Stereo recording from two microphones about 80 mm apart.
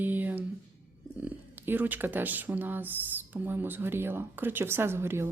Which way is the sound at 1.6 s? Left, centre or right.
Right.